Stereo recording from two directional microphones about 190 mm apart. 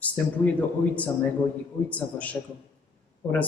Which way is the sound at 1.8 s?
10° left (ahead or behind).